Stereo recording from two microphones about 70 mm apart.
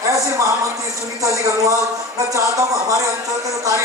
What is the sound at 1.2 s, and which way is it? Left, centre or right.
A man's voice, right.